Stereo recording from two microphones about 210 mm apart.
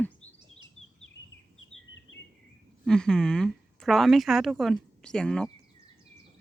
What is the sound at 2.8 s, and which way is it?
A woman's voice, 5° left (ahead or behind).